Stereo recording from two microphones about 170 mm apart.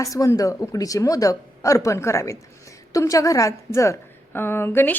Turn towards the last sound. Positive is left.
turn(degrees=15)  # may be behind; listen again after turning